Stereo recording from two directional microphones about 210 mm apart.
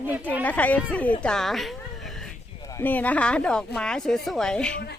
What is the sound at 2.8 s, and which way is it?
Speech, 10° left (ahead or behind).